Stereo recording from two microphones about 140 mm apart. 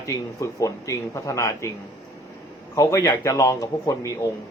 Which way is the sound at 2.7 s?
25° left (ahead or behind).